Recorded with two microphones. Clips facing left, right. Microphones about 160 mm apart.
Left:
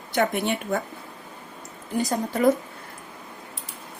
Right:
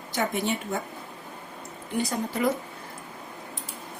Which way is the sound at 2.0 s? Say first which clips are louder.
Left 4 dB; 45° left (ahead or behind).